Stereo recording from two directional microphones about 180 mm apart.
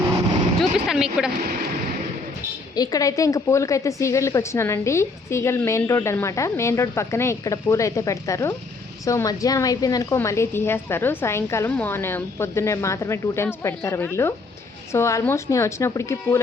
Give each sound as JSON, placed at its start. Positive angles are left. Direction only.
{"t": 0.6, "sound": "speech", "side_deg": 0}
{"t": 2.7, "sound": "a woman's voice", "side_deg": 20}